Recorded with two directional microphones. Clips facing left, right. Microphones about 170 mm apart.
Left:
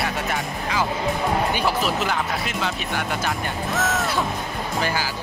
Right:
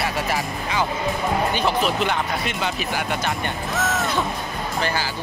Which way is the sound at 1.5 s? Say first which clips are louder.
Right 1 dB; 5° left (ahead or behind).